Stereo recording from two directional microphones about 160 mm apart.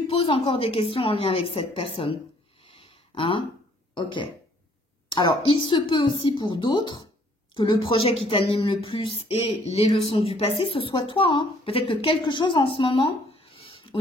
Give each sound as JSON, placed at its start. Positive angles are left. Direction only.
{"t": 0.1, "sound": "speech", "side_deg": 35}
{"t": 2.6, "sound": "a sound", "side_deg": 35}
{"t": 3.9, "sound": "speech", "side_deg": 30}